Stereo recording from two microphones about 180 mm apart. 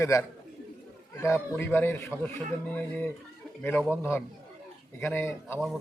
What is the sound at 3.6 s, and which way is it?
Speech, 10° left (ahead or behind).